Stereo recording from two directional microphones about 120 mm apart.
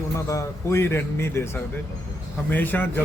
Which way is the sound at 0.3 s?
25° left (ahead or behind).